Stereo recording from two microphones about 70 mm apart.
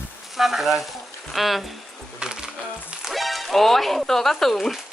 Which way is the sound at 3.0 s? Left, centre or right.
Centre.